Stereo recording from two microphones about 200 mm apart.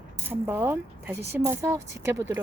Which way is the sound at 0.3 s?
10° right (ahead or behind).